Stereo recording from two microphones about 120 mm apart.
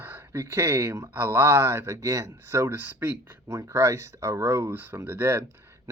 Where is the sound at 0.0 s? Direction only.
20° right (ahead or behind).